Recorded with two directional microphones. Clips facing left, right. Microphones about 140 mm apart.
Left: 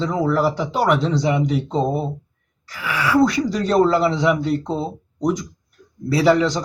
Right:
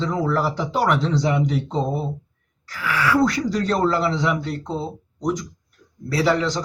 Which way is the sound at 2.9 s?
15° left (ahead or behind).